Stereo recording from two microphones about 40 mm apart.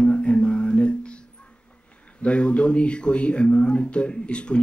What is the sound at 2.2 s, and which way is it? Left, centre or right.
Speech, left.